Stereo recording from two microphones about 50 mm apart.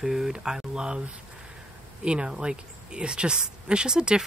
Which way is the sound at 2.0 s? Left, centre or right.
Right.